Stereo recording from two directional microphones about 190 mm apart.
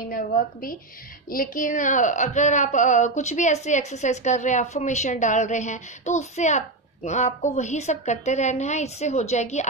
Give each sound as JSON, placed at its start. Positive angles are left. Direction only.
{"t": 0.1, "sound": "a woman's voice", "side_deg": 45}